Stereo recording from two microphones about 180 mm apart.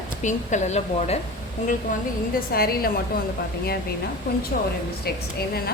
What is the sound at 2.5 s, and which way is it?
Speech, 55° left (ahead or behind).